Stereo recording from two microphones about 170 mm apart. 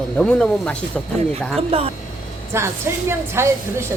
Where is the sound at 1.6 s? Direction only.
35° right (ahead or behind).